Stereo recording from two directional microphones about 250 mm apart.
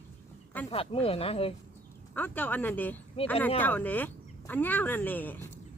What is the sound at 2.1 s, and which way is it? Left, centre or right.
Speech, centre.